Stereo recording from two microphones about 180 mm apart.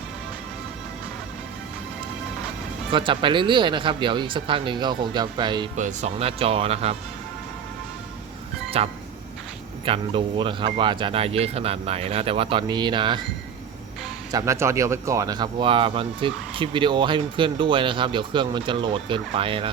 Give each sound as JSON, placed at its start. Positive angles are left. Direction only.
{"t": 2.9, "sound": "speech", "side_deg": -30}
{"t": 5.7, "sound": "speech", "side_deg": -40}
{"t": 8.7, "sound": "speech", "side_deg": -35}
{"t": 14.3, "sound": "speech", "side_deg": -15}